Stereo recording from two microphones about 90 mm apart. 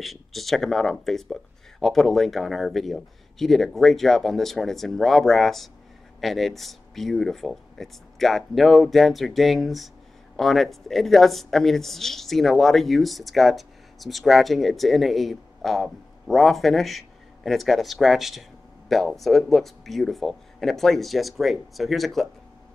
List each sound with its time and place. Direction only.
0.0 s speech: centre (ahead or behind)